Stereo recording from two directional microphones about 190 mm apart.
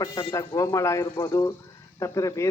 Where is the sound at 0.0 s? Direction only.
20° left (ahead or behind).